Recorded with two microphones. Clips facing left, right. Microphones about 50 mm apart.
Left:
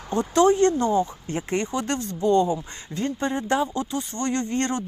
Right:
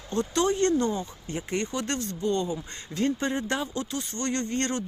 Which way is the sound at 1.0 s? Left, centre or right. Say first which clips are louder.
Left 7 dB; left.